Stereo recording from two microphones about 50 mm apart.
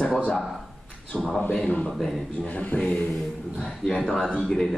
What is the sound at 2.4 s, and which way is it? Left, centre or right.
Speech, left.